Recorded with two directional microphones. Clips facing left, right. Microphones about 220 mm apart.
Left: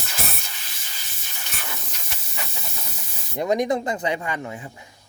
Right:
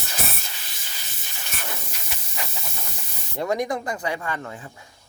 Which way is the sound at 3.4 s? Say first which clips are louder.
Left 3 dB; 20° left (ahead or behind).